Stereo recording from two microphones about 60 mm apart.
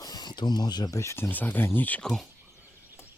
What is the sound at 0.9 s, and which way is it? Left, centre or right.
Speech, left.